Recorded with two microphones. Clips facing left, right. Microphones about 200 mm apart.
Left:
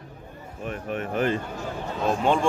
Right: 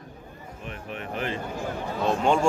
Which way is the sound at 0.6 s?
50° left (ahead or behind).